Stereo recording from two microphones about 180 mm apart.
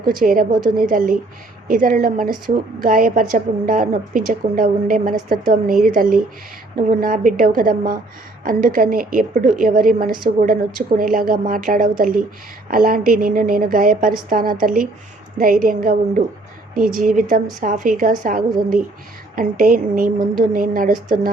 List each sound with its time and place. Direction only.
0.0 s a woman's voice: 50° right (ahead or behind)